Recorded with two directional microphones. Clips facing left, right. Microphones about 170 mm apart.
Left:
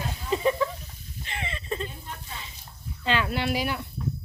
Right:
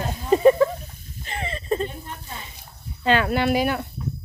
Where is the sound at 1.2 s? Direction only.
40° right (ahead or behind).